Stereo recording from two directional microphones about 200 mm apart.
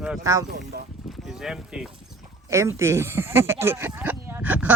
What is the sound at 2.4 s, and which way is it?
Speech, 15° right (ahead or behind).